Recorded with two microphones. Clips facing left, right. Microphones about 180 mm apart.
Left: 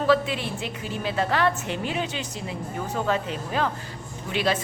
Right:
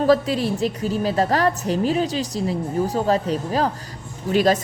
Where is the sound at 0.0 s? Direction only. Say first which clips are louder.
Right 5 dB; 40° right (ahead or behind).